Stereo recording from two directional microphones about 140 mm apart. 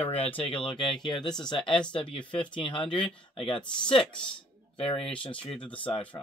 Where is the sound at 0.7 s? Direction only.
35° left (ahead or behind).